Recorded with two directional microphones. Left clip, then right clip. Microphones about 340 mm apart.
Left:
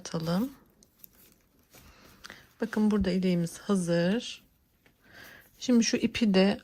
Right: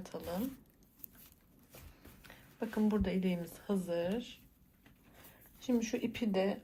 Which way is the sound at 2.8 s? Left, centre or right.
Centre.